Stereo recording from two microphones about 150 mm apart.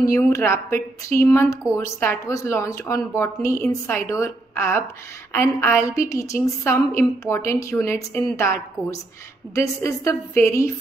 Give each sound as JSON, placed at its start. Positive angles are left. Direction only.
{"t": 0.0, "sound": "a woman's voice", "side_deg": 20}